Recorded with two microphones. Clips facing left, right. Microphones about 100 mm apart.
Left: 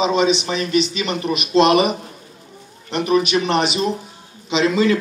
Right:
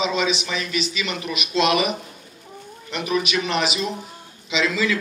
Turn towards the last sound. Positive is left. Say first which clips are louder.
# left 6 dB
turn(degrees=40)  # may be behind; listen again after turning